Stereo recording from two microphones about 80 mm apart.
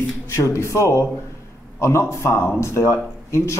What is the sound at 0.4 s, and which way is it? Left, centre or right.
Speech, left.